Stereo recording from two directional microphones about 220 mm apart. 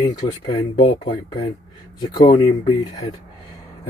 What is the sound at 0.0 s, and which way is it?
Speech, 20° left (ahead or behind).